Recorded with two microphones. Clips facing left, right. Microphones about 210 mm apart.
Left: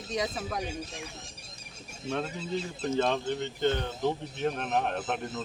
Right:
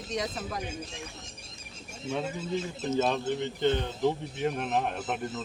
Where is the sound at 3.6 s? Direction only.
15° right (ahead or behind).